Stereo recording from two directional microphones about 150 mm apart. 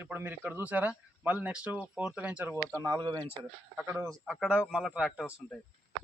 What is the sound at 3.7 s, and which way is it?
Speech, 10° right (ahead or behind).